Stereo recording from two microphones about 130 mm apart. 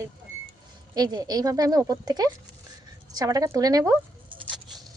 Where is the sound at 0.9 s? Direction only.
30° right (ahead or behind).